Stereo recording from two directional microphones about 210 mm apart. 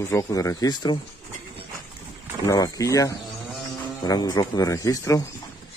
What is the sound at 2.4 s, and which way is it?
Speech, 15° left (ahead or behind).